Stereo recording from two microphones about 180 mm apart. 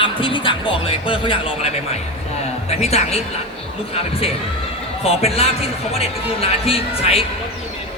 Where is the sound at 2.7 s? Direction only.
35° left (ahead or behind).